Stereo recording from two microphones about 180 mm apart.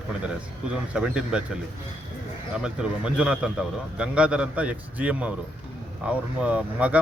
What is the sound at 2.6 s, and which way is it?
Speech, 5° right (ahead or behind).